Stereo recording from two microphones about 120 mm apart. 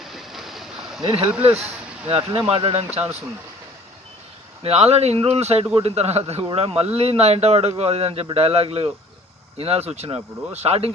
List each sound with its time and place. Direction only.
0.0 s a sound: centre (ahead or behind)
1.0 s speech: 50° right (ahead or behind)
4.6 s speech: 55° right (ahead or behind)